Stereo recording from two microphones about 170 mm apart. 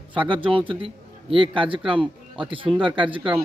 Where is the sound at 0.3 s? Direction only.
30° right (ahead or behind).